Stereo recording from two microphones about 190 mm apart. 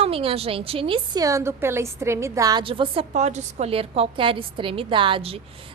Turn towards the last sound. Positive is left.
turn(degrees=-30)  # may be behind; listen again after turning